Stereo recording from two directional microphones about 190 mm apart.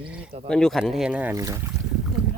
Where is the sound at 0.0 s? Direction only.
5° right (ahead or behind).